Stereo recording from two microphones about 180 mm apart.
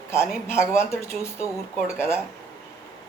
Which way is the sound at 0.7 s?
15° left (ahead or behind).